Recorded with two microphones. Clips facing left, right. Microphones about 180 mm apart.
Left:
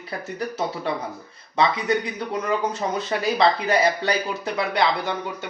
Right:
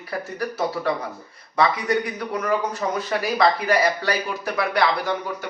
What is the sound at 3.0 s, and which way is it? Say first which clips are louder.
Speech: even; 25° left (ahead or behind).